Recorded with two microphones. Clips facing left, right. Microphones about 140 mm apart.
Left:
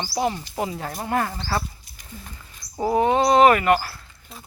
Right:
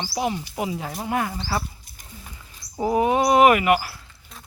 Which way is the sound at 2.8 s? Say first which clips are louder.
Left 1 dB; 10° right (ahead or behind).